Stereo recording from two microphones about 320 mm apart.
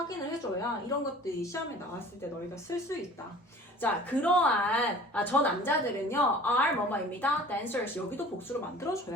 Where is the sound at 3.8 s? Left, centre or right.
Centre.